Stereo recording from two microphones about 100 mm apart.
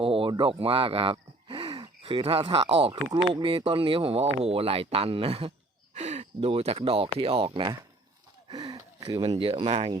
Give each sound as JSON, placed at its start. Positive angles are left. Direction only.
{"t": 0.0, "sound": "speech", "side_deg": -65}
{"t": 1.1, "sound": "gasp", "side_deg": -55}
{"t": 3.1, "sound": "speech", "side_deg": -40}
{"t": 3.4, "sound": "speech", "side_deg": -65}
{"t": 5.9, "sound": "speech", "side_deg": -90}
{"t": 8.4, "sound": "a sound", "side_deg": -40}
{"t": 9.4, "sound": "speech", "side_deg": -70}